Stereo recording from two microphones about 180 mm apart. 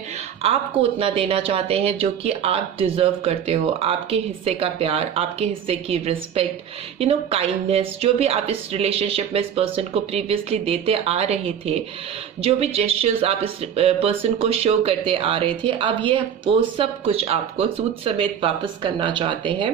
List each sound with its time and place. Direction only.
0.4 s speech: 30° right (ahead or behind)